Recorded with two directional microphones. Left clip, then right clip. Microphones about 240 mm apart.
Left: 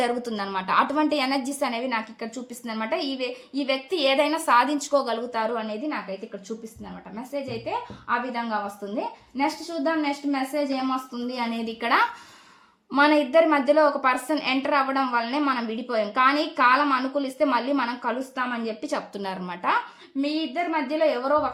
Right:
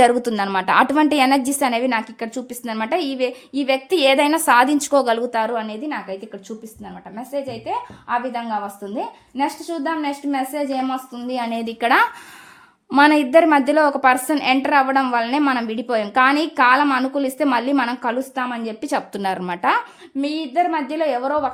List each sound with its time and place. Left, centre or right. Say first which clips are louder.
0.0 s a woman's voice: right 11 dB; right
7.3 s a woman's voice: right 5 dB; right